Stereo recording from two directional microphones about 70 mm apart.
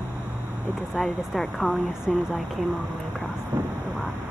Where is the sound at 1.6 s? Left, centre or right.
Centre.